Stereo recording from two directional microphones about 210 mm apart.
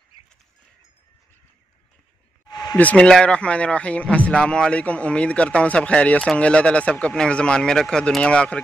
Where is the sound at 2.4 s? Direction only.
20° left (ahead or behind).